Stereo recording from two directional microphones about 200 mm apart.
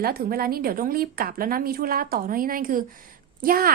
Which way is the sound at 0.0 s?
50° right (ahead or behind).